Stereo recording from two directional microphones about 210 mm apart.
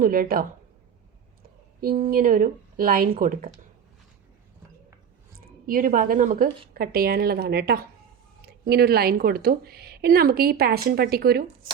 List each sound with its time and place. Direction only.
0.0 s a woman's voice: 45° right (ahead or behind)
1.8 s a woman's voice: 45° right (ahead or behind)
5.6 s a woman's voice: 40° right (ahead or behind)